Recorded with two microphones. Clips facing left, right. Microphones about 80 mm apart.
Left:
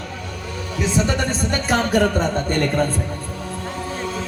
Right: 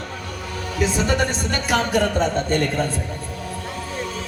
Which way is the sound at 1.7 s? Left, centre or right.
Left.